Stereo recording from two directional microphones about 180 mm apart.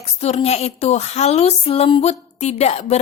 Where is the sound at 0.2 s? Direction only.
35° left (ahead or behind).